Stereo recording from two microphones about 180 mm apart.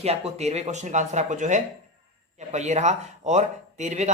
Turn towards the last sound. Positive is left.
turn(degrees=-40)  # may be behind; listen again after turning